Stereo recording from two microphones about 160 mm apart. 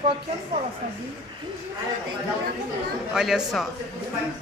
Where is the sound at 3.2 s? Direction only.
Centre (ahead or behind).